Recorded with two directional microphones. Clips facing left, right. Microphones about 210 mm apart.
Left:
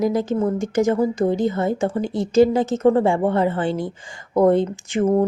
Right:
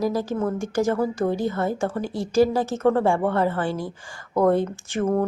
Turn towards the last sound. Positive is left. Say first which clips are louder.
# left 4 dB
turn(degrees=20)  # may be behind; listen again after turning